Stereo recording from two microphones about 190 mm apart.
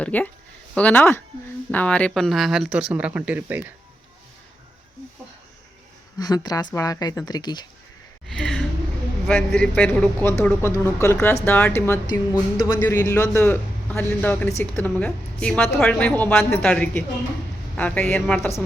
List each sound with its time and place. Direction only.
0.0 s speech: 10° left (ahead or behind); by 3.7 s 10° right (ahead or behind)
6.1 s a woman's voice: 20° left (ahead or behind)
8.3 s a sound: 5° left (ahead or behind)
9.2 s speech: 5° left (ahead or behind)